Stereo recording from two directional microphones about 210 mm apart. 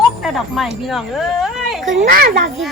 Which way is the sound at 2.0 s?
45° right (ahead or behind).